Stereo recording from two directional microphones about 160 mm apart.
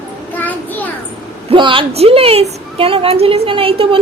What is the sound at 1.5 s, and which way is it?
A woman's voice, 30° right (ahead or behind).